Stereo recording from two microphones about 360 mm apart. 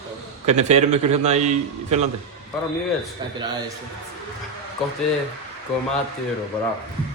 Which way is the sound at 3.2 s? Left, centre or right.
Centre.